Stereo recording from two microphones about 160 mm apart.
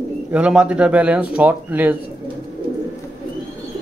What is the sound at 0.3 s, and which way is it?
Speech, 5° right (ahead or behind).